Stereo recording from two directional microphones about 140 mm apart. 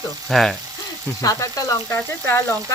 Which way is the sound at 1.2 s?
20° left (ahead or behind).